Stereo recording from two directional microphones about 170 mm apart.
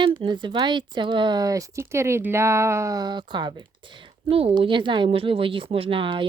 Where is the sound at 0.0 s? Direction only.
30° right (ahead or behind).